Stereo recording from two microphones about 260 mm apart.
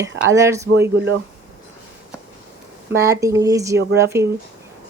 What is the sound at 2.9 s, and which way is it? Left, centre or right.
Speech, centre.